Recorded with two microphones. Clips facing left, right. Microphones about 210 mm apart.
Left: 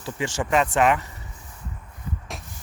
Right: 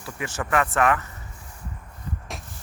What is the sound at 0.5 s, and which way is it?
Speech, 20° left (ahead or behind).